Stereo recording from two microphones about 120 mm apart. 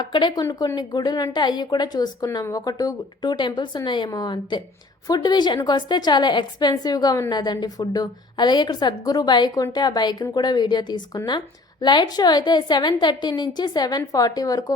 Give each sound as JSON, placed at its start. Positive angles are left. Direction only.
{"t": 0.0, "sound": "a woman's voice", "side_deg": 40}
{"t": 0.4, "sound": "a woman's voice", "side_deg": 25}
{"t": 0.8, "sound": "a woman's voice", "side_deg": 35}